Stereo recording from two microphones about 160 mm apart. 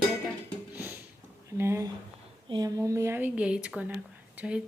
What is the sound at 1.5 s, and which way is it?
Speech, 15° right (ahead or behind).